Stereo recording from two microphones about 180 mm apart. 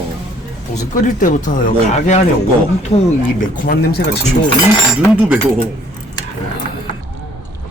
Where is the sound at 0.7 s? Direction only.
45° left (ahead or behind).